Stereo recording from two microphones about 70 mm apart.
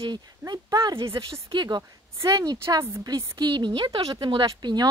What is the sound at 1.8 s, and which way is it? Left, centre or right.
Speech, right.